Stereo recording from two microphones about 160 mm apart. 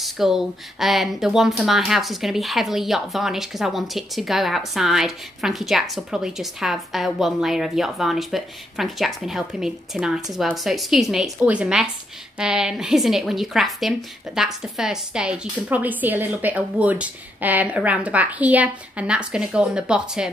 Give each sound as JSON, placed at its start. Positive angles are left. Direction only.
{"t": 0.0, "sound": "a woman's voice", "side_deg": 0}